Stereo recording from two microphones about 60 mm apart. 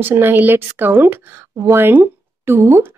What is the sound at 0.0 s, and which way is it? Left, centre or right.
A woman's voice, right.